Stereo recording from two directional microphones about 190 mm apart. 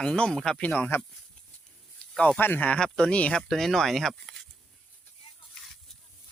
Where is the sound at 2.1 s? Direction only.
5° left (ahead or behind).